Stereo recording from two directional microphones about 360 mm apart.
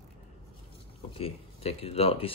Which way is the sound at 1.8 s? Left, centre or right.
Centre.